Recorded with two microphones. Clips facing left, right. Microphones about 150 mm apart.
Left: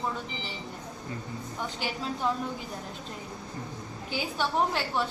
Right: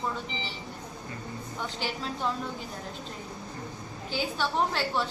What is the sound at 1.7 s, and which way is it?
Speech, 10° left (ahead or behind).